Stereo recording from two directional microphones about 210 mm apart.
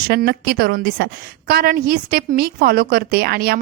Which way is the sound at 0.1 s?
50° right (ahead or behind).